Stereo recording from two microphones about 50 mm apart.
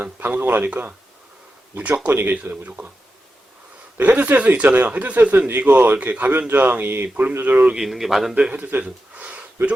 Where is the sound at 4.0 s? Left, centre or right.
Right.